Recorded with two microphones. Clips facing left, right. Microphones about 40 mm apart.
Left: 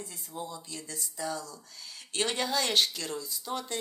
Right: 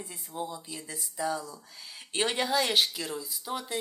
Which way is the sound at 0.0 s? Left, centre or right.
Centre.